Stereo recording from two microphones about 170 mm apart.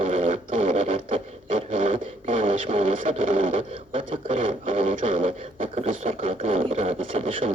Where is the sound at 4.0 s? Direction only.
50° right (ahead or behind).